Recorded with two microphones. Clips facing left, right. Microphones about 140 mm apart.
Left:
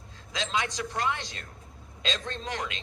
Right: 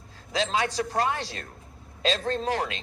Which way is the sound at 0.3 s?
35° right (ahead or behind).